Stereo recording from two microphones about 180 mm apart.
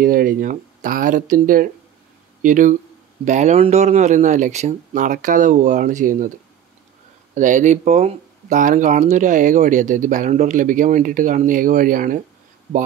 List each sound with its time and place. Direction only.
0.0 s speech: 50° right (ahead or behind)
7.3 s speech: 45° right (ahead or behind)